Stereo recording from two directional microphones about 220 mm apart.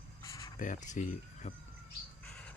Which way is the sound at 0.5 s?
35° left (ahead or behind).